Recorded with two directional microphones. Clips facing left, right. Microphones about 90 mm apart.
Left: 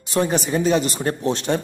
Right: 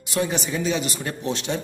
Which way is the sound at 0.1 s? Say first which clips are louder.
Left 5 dB; 40° left (ahead or behind).